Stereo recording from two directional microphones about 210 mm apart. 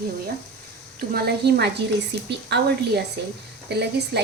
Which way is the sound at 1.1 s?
50° right (ahead or behind).